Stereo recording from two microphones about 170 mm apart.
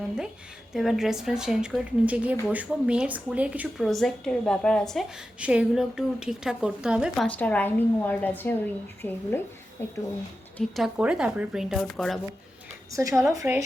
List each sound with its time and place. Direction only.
0.7 s a woman's voice: centre (ahead or behind)
3.8 s a woman's voice: centre (ahead or behind)
7.3 s a woman's voice: 10° left (ahead or behind)
10.6 s a woman's voice: centre (ahead or behind)
12.9 s a woman's voice: 20° right (ahead or behind)